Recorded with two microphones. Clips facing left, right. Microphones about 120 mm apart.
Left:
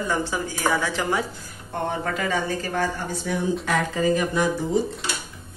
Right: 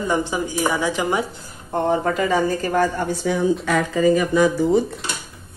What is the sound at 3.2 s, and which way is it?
Speech, 90° right.